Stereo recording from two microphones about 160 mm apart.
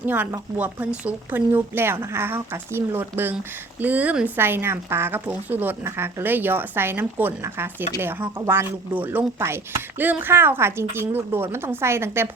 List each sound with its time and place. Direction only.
0.0 s speech: 10° right (ahead or behind)